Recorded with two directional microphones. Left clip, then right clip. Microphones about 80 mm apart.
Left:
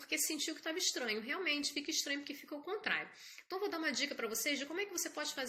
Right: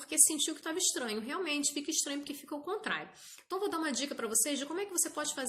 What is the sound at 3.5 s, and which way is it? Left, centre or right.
A woman's voice, right.